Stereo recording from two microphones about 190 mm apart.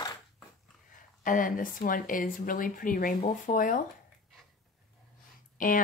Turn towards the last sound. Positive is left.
turn(degrees=45)  # may be behind; listen again after turning